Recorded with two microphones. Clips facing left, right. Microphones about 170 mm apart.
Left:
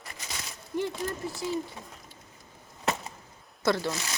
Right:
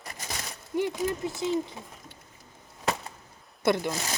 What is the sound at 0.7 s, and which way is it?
Speech, 15° right (ahead or behind).